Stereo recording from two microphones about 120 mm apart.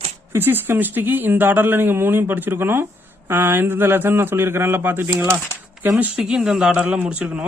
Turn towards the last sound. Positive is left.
turn(degrees=-10)  # may be behind; listen again after turning